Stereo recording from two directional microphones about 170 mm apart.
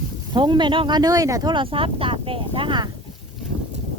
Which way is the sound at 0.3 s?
25° right (ahead or behind).